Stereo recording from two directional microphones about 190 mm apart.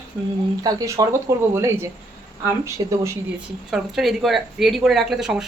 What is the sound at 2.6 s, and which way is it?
Speech, 15° right (ahead or behind).